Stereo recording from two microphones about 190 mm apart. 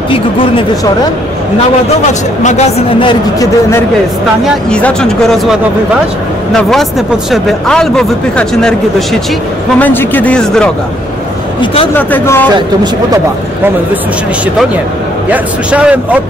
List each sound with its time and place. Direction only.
2.4 s a woman's voice: 35° left (ahead or behind)
4.6 s a man's voice: 5° left (ahead or behind)
11.6 s a woman's voice: 30° left (ahead or behind)
11.9 s a man's voice: 10° left (ahead or behind)
15.2 s a man's voice: 5° right (ahead or behind)